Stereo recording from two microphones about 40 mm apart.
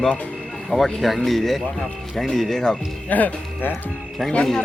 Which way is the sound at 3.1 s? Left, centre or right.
Left.